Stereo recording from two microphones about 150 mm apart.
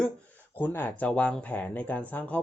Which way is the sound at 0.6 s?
10° left (ahead or behind).